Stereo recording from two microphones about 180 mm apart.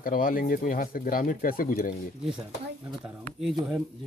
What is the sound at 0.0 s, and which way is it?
Speech, 50° left (ahead or behind).